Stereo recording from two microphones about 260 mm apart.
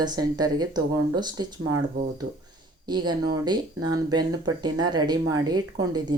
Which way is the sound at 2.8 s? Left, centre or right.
Centre.